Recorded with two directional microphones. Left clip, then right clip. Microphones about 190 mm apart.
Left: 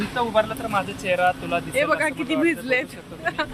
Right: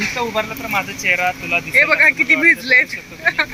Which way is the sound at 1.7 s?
Centre (ahead or behind).